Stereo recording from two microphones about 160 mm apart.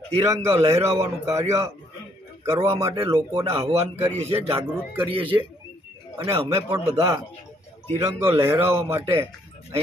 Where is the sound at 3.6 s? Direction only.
40° right (ahead or behind).